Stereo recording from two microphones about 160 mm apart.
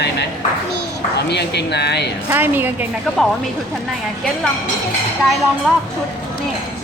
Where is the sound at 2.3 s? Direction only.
10° right (ahead or behind).